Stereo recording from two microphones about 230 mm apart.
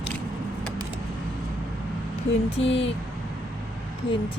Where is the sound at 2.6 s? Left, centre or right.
Left.